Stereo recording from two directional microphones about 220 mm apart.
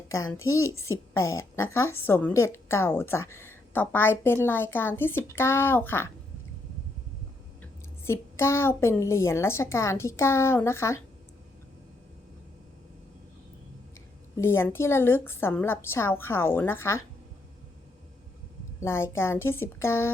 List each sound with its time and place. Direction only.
0.1 s a child's voice: 15° left (ahead or behind)
7.6 s a woman's voice: 10° left (ahead or behind)
14.3 s a woman's voice: 10° left (ahead or behind)
18.8 s a woman's voice: 10° left (ahead or behind)